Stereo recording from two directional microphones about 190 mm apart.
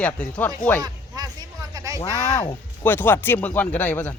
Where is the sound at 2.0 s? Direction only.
20° left (ahead or behind).